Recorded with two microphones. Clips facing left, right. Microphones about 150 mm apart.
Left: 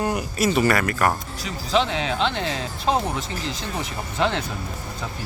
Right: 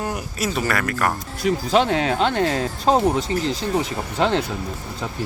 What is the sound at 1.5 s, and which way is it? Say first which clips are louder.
Speech: right 5 dB; 50° right (ahead or behind).